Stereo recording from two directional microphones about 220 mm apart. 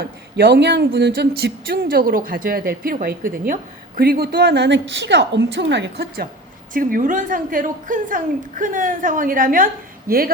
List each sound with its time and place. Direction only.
0.0 s speech: 50° right (ahead or behind)
6.7 s a woman's voice: 40° right (ahead or behind)